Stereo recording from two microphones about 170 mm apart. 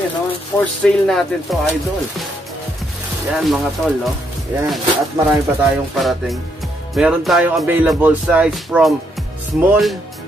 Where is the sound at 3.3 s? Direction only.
Centre (ahead or behind).